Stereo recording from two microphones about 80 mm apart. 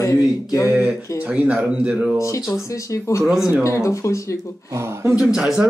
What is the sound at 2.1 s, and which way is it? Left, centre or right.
Speech, left.